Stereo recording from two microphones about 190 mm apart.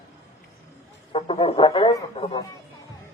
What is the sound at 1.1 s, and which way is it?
A man's voice, 30° left (ahead or behind).